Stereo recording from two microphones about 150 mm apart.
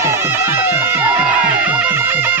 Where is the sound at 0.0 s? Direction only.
15° right (ahead or behind).